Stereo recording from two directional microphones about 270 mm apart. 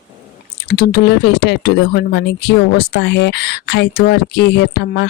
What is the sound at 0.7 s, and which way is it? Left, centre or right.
Speech, left.